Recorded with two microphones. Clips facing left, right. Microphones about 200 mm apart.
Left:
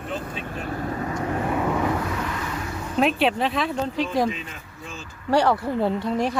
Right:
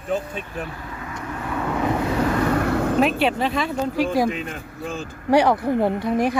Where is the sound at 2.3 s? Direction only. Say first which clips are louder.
Right 10 dB; 60° right (ahead or behind).